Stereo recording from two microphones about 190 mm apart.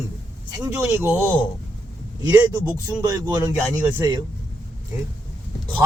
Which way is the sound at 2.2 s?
15° right (ahead or behind).